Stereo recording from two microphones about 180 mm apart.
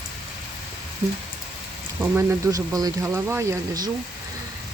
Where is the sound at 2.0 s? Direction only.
15° right (ahead or behind).